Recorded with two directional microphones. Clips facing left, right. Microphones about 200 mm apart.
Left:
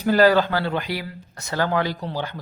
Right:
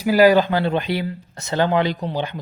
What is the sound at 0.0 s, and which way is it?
Speech, 10° right (ahead or behind).